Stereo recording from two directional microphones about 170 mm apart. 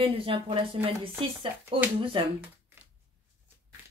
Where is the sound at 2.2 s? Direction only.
30° right (ahead or behind).